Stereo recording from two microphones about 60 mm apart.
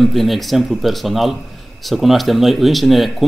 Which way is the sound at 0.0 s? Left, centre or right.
Centre.